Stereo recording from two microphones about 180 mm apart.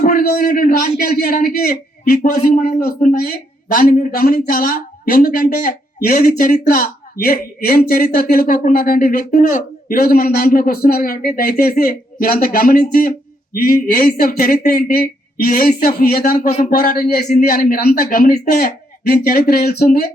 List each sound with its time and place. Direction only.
0.0 s a man's voice: 55° left (ahead or behind)